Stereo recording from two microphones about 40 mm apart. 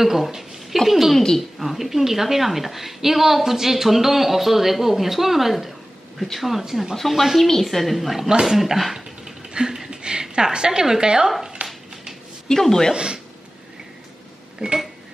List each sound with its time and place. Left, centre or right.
0.0 s a woman's voice: centre
8.2 s a woman's voice: centre
11.6 s a sound: right
12.4 s a woman's voice: centre
12.9 s speech: right
14.6 s a sound: centre